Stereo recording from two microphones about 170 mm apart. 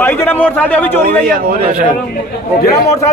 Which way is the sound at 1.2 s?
55° right (ahead or behind).